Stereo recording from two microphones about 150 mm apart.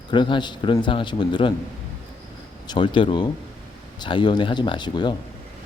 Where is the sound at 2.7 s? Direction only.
35° left (ahead or behind).